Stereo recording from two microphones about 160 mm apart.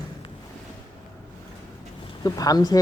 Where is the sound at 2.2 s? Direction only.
25° left (ahead or behind).